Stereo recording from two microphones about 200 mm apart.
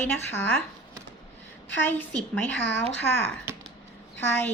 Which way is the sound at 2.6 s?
60° left (ahead or behind).